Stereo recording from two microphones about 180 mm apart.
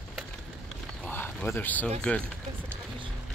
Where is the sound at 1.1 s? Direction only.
10° left (ahead or behind).